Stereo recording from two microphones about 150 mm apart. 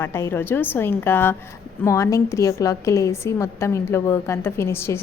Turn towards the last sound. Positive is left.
turn(degrees=15)  # may be behind; listen again after turning